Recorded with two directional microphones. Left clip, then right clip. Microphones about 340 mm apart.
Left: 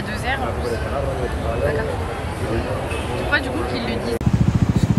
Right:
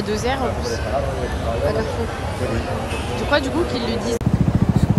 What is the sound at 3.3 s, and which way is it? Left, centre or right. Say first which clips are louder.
Speech: right 3 dB; centre.